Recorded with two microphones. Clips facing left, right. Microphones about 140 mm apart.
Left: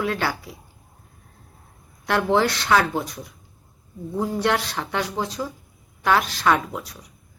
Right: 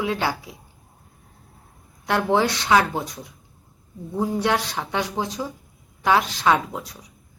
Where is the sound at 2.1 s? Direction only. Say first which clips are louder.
Even; 15° right (ahead or behind).